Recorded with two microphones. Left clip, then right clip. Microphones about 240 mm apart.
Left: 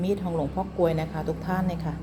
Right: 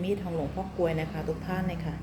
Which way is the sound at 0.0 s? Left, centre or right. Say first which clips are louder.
Left 4 dB; centre.